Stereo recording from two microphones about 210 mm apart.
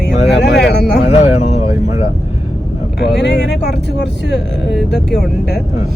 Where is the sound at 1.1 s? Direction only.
30° left (ahead or behind).